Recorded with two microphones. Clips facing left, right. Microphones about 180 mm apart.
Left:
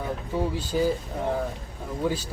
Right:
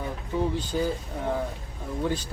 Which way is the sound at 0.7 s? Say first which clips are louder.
Left 4 dB; 5° left (ahead or behind).